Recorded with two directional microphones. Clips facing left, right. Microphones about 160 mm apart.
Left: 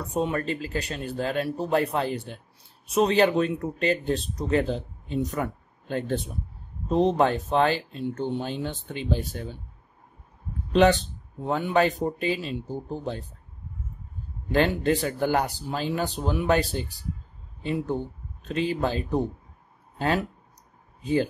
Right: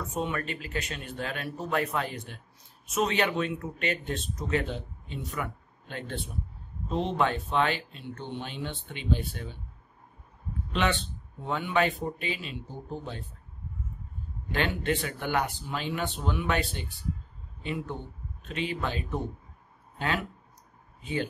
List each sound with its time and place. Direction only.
0.0 s speech: 35° left (ahead or behind)
10.7 s speech: 40° left (ahead or behind)
14.5 s speech: 35° left (ahead or behind)